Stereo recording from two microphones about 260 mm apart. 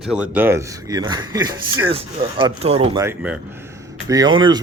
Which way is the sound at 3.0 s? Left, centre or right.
Centre.